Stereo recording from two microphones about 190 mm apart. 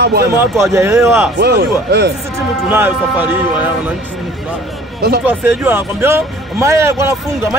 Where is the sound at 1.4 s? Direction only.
60° right (ahead or behind).